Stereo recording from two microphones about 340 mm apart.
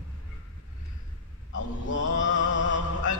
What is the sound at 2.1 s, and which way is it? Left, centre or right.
Music, left.